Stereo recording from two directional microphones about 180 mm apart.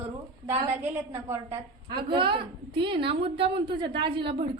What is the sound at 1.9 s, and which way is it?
A woman's voice, 25° right (ahead or behind).